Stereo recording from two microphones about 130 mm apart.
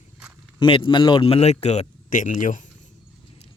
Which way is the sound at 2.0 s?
85° left.